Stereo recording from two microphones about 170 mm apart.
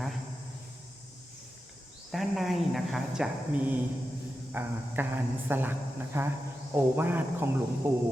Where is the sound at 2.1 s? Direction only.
Centre (ahead or behind).